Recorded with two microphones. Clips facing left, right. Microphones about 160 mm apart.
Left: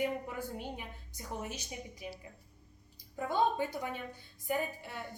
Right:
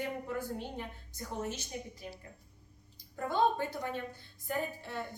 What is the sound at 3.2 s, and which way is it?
A woman's voice, 10° left (ahead or behind).